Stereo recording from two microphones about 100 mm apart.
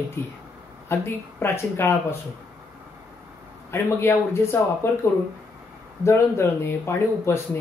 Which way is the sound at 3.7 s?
25° left (ahead or behind).